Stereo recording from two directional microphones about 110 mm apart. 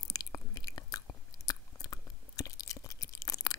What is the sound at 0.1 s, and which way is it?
Chewing, 35° left (ahead or behind).